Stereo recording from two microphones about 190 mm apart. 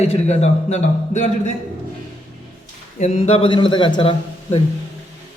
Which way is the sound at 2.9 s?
35° left (ahead or behind).